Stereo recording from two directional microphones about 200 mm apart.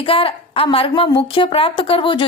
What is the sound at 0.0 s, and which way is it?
A woman's voice, 25° left (ahead or behind).